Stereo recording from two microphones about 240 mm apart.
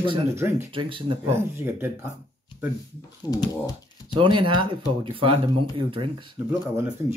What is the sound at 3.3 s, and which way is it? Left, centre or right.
Speech, centre.